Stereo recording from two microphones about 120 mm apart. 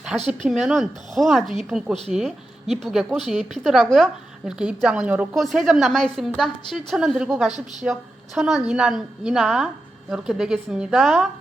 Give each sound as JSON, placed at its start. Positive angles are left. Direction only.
{"t": 0.4, "sound": "speech", "side_deg": 0}
{"t": 4.4, "sound": "a woman's voice", "side_deg": -5}
{"t": 5.3, "sound": "speech", "side_deg": 0}